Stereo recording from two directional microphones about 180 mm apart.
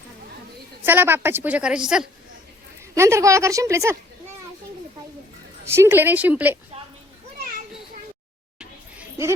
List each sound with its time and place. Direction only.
0.9 s a woman's voice: 10° right (ahead or behind)
2.9 s a woman's voice: 15° right (ahead or behind)
5.7 s a woman's voice: 10° right (ahead or behind)